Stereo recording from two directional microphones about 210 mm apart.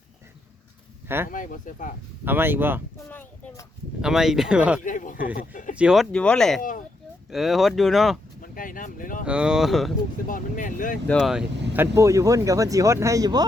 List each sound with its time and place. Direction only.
1.0 s speech: 10° right (ahead or behind)
1.3 s speech: 40° left (ahead or behind)
2.2 s speech: 10° right (ahead or behind)
3.1 s a sound: 10° left (ahead or behind)
4.0 s speech: centre (ahead or behind)
4.8 s speech: 40° left (ahead or behind)
5.7 s speech: 5° right (ahead or behind)
6.6 s speech: 40° left (ahead or behind)
7.3 s speech: centre (ahead or behind)
8.4 s a sound: 40° left (ahead or behind)
9.2 s speech: 5° right (ahead or behind)
10.2 s speech: 40° left (ahead or behind)
11.1 s speech: centre (ahead or behind)
11.7 s speech: 10° right (ahead or behind)